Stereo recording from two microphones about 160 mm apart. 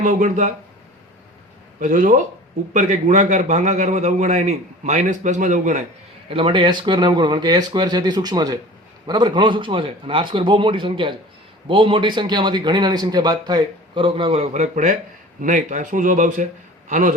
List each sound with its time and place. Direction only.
0.0 s a man's voice: 50° right (ahead or behind)
1.8 s a man's voice: 55° right (ahead or behind)
6.3 s a man's voice: 30° right (ahead or behind); by 17.2 s 55° right (ahead or behind)